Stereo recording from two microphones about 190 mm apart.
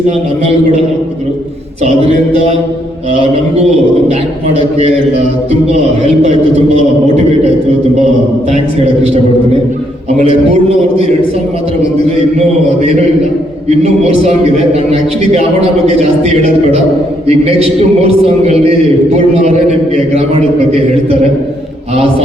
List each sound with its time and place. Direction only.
1.8 s a man's voice: 35° right (ahead or behind)
4.1 s a man's voice: 35° right (ahead or behind)
8.4 s a man's voice: 35° right (ahead or behind)
13.8 s a man's voice: 35° right (ahead or behind)
17.2 s a man's voice: 30° right (ahead or behind)